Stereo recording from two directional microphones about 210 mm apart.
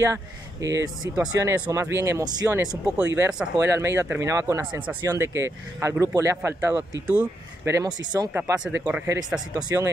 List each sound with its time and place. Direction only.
0.0 s speech: 15° right (ahead or behind)